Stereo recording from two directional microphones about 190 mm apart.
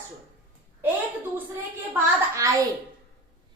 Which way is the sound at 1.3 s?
10° right (ahead or behind).